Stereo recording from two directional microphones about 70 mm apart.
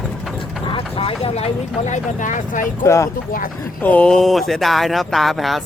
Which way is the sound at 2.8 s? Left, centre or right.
Left.